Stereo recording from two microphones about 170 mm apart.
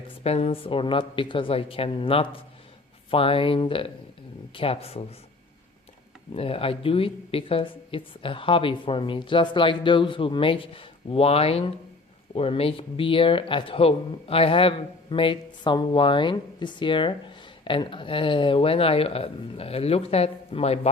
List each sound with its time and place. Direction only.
0.2 s speech: 35° left (ahead or behind)
6.3 s speech: 35° left (ahead or behind)